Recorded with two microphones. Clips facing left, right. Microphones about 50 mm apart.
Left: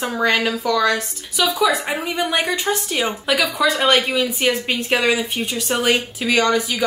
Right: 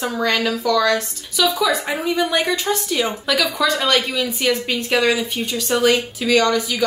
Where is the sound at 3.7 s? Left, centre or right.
Left.